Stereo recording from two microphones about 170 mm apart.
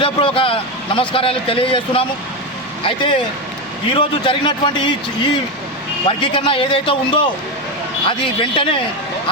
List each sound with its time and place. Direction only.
0.0 s a man's voice: 30° left (ahead or behind)
6.1 s a man's voice: 30° left (ahead or behind)